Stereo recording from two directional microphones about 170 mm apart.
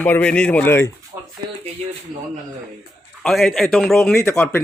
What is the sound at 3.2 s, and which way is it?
Speech, centre (ahead or behind).